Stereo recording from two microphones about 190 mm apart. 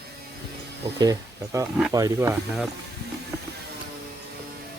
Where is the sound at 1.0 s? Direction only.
15° right (ahead or behind).